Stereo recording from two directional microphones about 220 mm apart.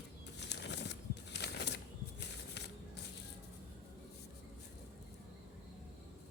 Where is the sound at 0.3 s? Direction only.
50° left (ahead or behind).